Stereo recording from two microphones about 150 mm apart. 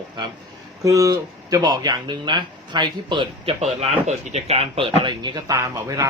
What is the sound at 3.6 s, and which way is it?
Speech, 45° right (ahead or behind).